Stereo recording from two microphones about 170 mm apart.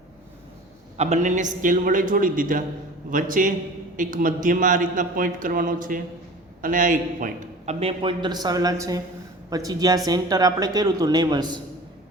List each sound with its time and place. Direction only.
0.9 s a man's voice: 45° right (ahead or behind); by 11.6 s 25° right (ahead or behind)